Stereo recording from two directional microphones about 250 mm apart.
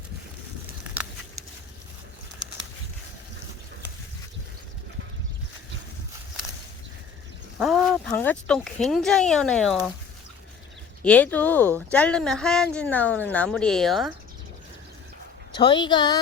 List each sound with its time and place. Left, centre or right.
0.9 s a sound: centre
7.6 s speech: centre
11.0 s speech: centre
15.5 s a woman's voice: centre